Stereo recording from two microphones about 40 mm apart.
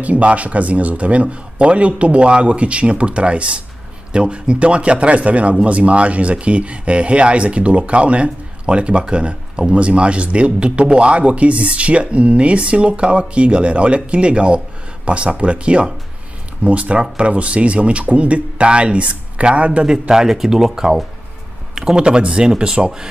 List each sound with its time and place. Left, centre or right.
0.0 s speech: right
19.9 s speech: centre